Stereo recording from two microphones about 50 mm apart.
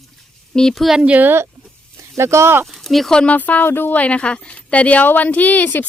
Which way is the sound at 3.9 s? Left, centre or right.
Left.